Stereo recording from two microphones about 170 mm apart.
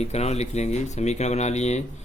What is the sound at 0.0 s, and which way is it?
Speech, 40° left (ahead or behind).